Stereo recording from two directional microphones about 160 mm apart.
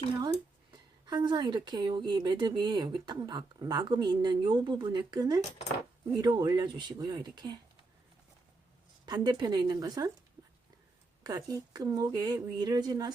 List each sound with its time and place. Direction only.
0.7 s speech: 25° right (ahead or behind)
9.0 s speech: 25° right (ahead or behind)
11.2 s speech: 25° right (ahead or behind)